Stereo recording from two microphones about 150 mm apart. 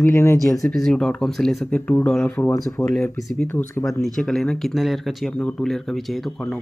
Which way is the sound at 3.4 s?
15° left (ahead or behind).